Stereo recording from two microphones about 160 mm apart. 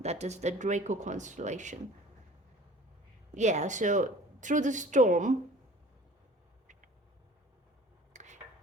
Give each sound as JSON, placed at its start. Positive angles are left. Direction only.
{"t": 0.0, "sound": "speech", "side_deg": -45}
{"t": 3.3, "sound": "speech", "side_deg": -45}
{"t": 8.1, "sound": "a sound", "side_deg": -45}